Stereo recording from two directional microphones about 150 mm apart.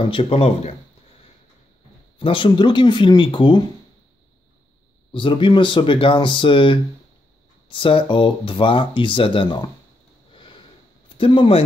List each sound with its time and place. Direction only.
0.1 s speech: 40° left (ahead or behind)
2.1 s speech: 35° left (ahead or behind)
5.1 s speech: 35° left (ahead or behind)
10.3 s sniff: 35° left (ahead or behind)
11.1 s speech: 40° left (ahead or behind)